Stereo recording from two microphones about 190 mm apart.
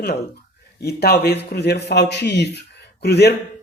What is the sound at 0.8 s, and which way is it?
Speech, 55° left (ahead or behind).